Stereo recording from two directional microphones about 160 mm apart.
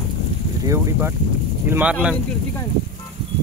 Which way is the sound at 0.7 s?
15° right (ahead or behind).